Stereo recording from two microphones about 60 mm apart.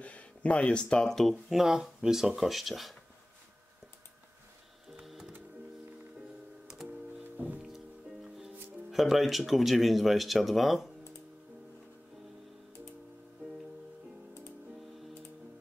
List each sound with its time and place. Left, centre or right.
0.0 s speech: left
1.5 s speech: centre
5.0 s music: centre
7.3 s music: right
7.6 s music: centre
8.9 s speech: centre